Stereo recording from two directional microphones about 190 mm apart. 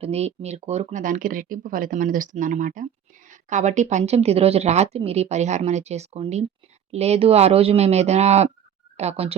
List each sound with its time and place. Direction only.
0.0 s speech: 35° right (ahead or behind)